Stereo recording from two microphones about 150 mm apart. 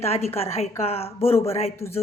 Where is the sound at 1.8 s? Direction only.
15° left (ahead or behind).